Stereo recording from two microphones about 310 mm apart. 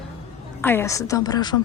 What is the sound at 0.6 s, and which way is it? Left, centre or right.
Speech, centre.